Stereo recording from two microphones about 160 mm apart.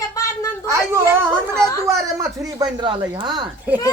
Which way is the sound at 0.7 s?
15° right (ahead or behind).